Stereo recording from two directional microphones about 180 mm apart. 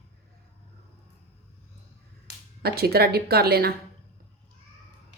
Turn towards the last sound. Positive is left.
turn(degrees=-60)  # may be behind; listen again after turning